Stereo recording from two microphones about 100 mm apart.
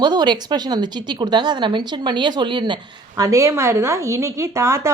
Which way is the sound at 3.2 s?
30° right (ahead or behind).